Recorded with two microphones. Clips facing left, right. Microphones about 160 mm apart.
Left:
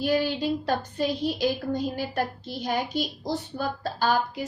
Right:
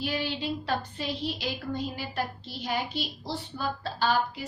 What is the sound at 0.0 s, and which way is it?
A woman's voice, 45° left (ahead or behind).